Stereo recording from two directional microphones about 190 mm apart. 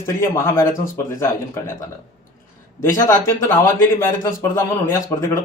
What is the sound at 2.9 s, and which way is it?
A man's voice, 15° left (ahead or behind).